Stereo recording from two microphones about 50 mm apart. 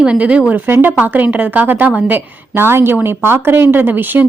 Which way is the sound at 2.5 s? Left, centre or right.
Right.